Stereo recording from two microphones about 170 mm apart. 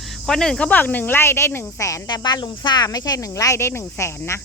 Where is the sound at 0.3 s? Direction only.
5° left (ahead or behind).